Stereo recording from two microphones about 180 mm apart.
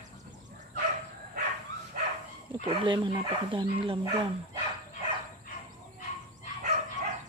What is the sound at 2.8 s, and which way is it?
Speech, 25° right (ahead or behind).